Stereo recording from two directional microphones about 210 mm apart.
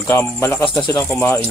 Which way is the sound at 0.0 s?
10° left (ahead or behind).